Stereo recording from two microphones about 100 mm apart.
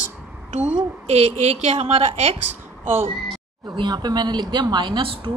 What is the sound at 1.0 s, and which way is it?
Speech, 90° right.